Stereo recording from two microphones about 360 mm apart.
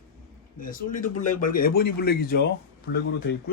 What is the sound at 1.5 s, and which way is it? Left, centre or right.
Speech, left.